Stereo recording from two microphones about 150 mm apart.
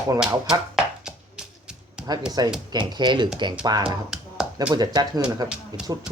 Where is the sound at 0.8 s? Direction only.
5° right (ahead or behind).